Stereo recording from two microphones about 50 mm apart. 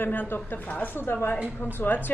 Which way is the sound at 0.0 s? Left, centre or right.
Left.